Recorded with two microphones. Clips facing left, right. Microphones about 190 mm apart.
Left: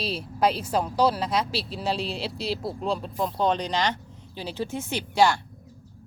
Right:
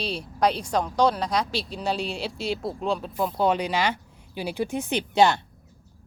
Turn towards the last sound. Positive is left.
turn(degrees=-20)  # may be behind; listen again after turning